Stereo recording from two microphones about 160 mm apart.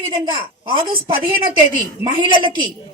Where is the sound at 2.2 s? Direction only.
30° right (ahead or behind).